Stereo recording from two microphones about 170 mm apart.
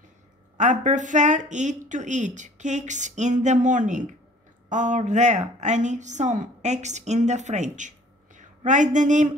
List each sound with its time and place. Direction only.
0.6 s speech: 45° right (ahead or behind)